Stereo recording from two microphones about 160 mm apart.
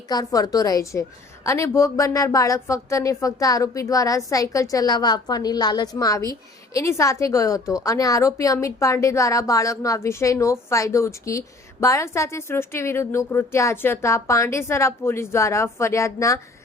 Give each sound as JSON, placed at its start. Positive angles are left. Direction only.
{"t": 0.1, "sound": "a woman's voice", "side_deg": 25}